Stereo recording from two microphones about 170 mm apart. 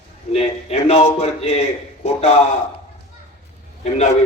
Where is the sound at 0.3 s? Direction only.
40° left (ahead or behind).